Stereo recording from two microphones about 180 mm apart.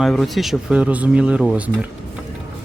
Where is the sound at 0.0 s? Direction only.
Centre (ahead or behind).